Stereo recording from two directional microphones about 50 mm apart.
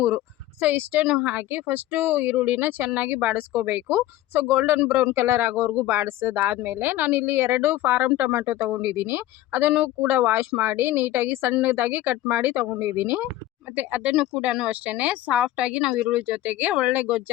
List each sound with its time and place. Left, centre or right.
0.6 s speech: right
3.7 s speech: right
8.4 s speech: right
13.7 s speech: right
14.2 s speech: centre
14.7 s speech: right